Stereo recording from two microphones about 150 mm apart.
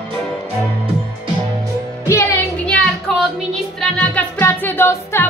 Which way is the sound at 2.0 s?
15° left (ahead or behind).